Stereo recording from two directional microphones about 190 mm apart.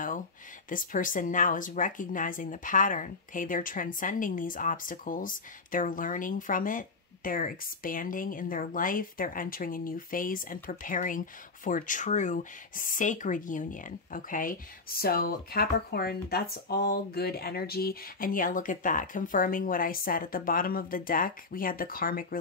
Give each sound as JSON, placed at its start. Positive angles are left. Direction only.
{"t": 0.7, "sound": "a woman's voice", "side_deg": 45}